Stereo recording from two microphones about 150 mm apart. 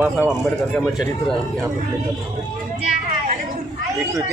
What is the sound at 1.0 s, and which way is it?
Speech, centre (ahead or behind).